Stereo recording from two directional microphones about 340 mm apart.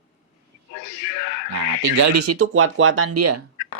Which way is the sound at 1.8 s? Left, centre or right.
Right.